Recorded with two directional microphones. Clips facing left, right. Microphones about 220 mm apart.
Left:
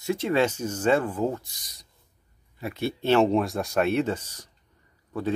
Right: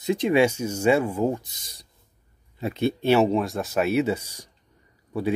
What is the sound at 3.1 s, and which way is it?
Speech, 5° right (ahead or behind).